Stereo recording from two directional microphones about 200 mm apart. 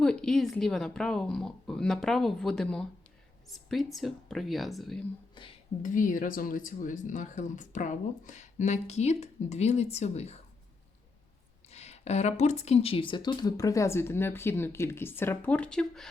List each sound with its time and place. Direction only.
0.0 s speech: 5° left (ahead or behind)
5.8 s speech: 40° left (ahead or behind)
11.7 s a woman's voice: 35° left (ahead or behind); by 16.0 s 5° left (ahead or behind)